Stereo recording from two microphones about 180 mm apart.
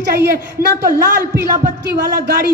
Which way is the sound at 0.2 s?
60° right (ahead or behind).